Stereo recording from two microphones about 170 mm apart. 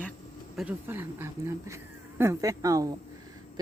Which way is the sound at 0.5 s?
10° right (ahead or behind).